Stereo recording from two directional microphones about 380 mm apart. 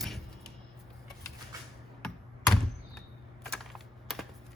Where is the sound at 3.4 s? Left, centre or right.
Centre.